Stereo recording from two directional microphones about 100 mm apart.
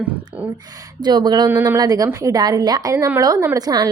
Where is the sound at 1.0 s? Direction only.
45° right (ahead or behind).